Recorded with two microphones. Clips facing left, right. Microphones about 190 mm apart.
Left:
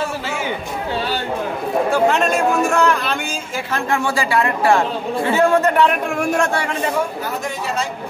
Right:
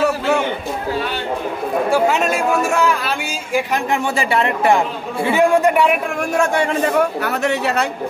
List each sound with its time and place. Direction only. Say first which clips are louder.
1.9 s speech: even; 5° right (ahead or behind)
3.5 s speech: right 3 dB; 20° right (ahead or behind)
7.0 s speech: right 5 dB; 65° right (ahead or behind)